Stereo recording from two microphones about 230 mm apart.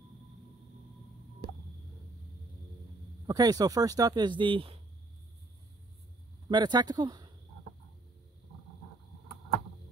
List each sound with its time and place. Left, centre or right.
3.3 s speech: centre
6.5 s speech: centre